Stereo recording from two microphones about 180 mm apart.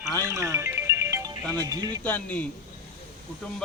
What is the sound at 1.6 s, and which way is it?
Speech, 20° right (ahead or behind).